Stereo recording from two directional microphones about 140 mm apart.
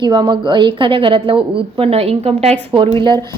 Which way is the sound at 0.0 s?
30° right (ahead or behind).